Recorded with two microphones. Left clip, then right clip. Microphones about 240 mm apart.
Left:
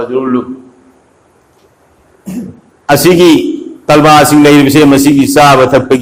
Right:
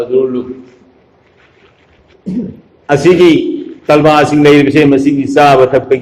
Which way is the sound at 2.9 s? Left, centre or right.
Left.